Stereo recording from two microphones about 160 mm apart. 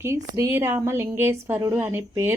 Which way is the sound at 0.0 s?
20° right (ahead or behind).